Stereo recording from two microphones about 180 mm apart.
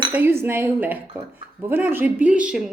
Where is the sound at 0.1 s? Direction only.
10° right (ahead or behind).